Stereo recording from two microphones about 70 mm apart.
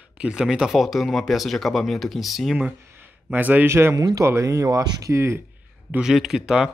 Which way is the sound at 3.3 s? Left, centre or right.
Right.